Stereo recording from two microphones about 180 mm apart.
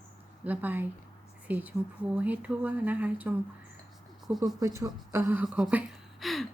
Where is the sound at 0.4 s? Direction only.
10° right (ahead or behind).